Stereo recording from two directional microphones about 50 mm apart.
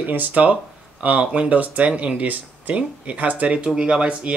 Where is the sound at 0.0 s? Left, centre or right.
Right.